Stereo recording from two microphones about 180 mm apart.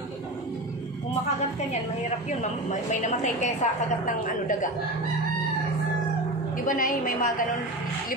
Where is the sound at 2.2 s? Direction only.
40° left (ahead or behind).